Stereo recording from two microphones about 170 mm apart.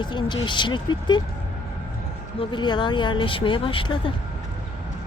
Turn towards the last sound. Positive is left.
turn(degrees=30)  # may be behind; listen again after turning